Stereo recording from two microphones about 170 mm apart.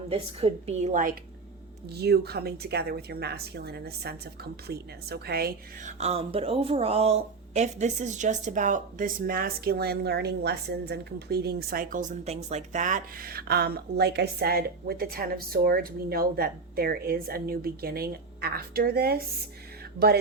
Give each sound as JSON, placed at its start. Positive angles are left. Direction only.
{"t": 0.1, "sound": "a woman's voice", "side_deg": -35}
{"t": 1.9, "sound": "a woman's voice", "side_deg": -70}
{"t": 5.8, "sound": "speech", "side_deg": -40}